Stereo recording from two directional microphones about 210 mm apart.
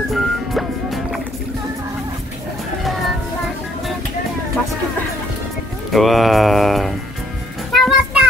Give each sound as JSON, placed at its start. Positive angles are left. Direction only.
{"t": 0.1, "sound": "music", "side_deg": 0}
{"t": 5.9, "sound": "mantra", "side_deg": 0}
{"t": 7.7, "sound": "music", "side_deg": 0}